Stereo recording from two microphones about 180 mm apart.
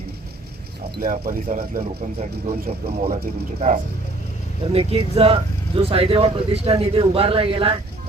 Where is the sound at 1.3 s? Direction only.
45° right (ahead or behind).